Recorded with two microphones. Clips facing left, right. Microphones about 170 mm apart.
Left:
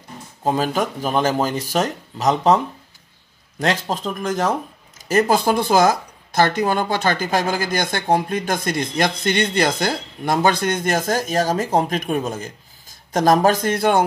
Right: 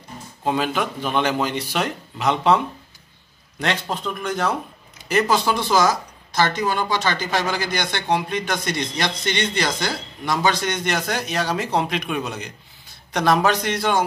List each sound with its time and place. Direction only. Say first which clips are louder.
0.5 s speech: left 2 dB; 40° left (ahead or behind)